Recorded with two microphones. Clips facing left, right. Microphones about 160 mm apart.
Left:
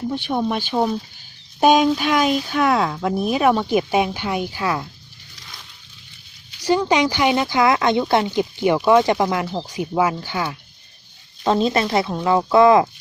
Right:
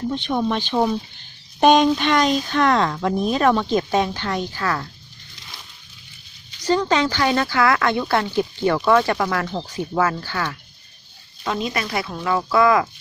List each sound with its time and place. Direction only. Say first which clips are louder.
0.0 s speech: even; 10° left (ahead or behind)
6.6 s speech: left 1 dB; 10° left (ahead or behind)
9.5 s speech: left 1 dB; 10° left (ahead or behind)
11.4 s speech: left 7 dB; 30° left (ahead or behind)